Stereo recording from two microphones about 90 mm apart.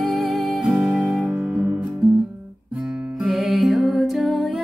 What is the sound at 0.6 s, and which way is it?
Music, 15° right (ahead or behind).